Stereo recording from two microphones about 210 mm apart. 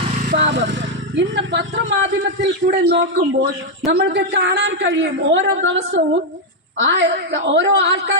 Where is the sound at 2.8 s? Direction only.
50° right (ahead or behind).